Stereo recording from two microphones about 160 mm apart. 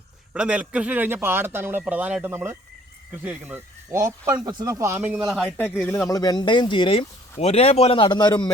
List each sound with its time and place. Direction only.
0.3 s speech: 5° right (ahead or behind)
5.5 s speech: 10° left (ahead or behind)
6.1 s speech: 25° left (ahead or behind)